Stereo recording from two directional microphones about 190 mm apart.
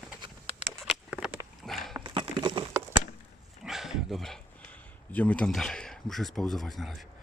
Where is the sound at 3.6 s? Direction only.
Centre (ahead or behind).